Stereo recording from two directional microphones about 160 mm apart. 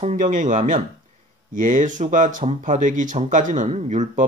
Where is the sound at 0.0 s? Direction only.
50° right (ahead or behind).